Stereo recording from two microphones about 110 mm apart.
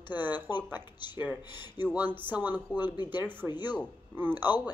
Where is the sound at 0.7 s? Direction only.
20° right (ahead or behind).